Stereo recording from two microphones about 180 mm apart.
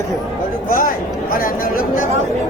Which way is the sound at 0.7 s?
50° left (ahead or behind).